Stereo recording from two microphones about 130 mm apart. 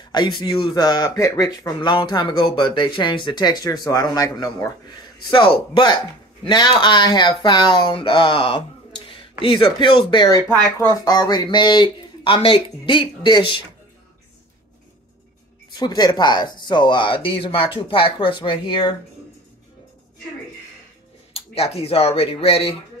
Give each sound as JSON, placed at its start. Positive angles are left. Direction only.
{"t": 0.0, "sound": "speech", "side_deg": 35}
{"t": 15.7, "sound": "speech", "side_deg": 35}
{"t": 21.3, "sound": "speech", "side_deg": 50}